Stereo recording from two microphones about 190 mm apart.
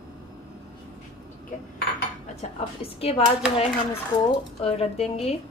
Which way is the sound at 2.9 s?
30° left (ahead or behind).